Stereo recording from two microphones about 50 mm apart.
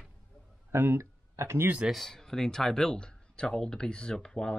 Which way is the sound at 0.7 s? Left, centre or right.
Right.